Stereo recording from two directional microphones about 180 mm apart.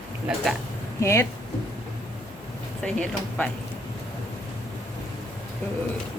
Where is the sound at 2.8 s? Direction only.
5° left (ahead or behind).